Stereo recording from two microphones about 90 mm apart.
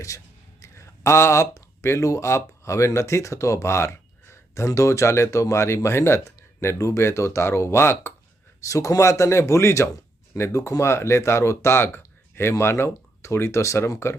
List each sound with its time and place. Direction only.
0.6 s speech: 35° left (ahead or behind)
8.6 s a man's voice: 40° left (ahead or behind)